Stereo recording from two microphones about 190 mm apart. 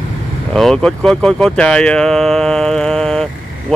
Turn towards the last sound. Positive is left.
turn(degrees=5)  # may be behind; listen again after turning